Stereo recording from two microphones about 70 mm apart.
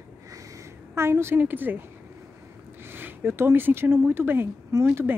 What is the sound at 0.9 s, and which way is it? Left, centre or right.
Speech, right.